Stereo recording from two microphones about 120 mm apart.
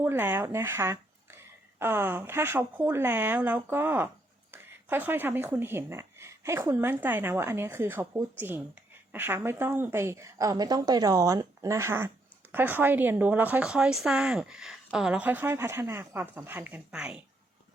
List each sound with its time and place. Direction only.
0.0 s speech: 15° right (ahead or behind)